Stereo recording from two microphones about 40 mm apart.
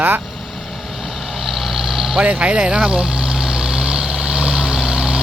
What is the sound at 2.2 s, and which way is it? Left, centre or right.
Vehicle, right.